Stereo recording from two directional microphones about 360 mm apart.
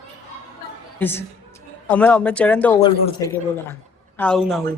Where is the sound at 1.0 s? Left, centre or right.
Centre.